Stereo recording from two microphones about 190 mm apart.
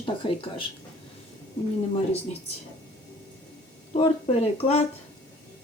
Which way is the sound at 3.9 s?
35° left (ahead or behind).